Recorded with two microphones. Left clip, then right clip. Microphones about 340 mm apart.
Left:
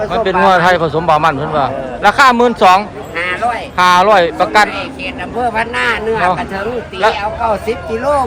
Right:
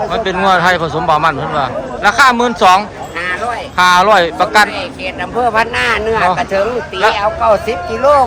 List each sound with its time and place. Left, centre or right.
0.1 s a man's voice: centre
5.4 s speech: centre